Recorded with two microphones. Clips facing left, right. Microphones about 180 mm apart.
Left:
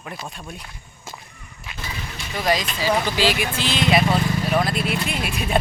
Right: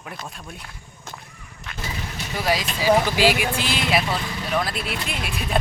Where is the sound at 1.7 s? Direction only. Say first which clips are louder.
Right 1 dB; 5° left (ahead or behind).